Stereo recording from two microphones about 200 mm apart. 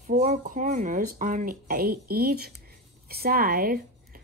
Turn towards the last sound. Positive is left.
turn(degrees=-50)  # may be behind; listen again after turning